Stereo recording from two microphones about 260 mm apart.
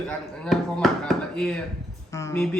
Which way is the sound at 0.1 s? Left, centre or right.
Centre.